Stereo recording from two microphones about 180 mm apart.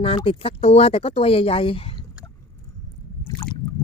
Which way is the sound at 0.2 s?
30° left (ahead or behind).